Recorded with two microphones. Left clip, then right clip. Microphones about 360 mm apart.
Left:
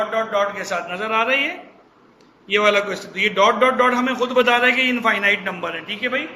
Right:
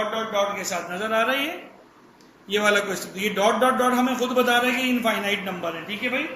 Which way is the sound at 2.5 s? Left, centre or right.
Left.